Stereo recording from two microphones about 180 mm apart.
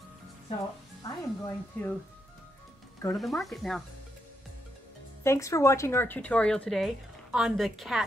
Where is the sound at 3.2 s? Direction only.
Centre (ahead or behind).